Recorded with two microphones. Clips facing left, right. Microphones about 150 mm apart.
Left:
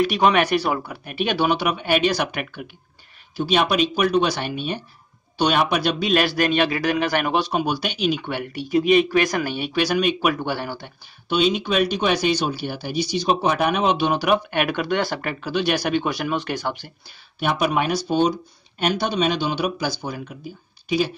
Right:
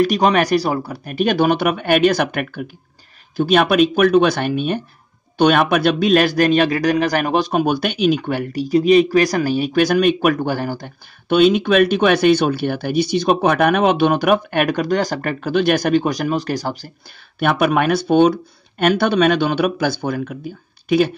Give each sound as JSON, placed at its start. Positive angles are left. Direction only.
{"t": 0.0, "sound": "speech", "side_deg": -40}
{"t": 17.4, "sound": "speech", "side_deg": -55}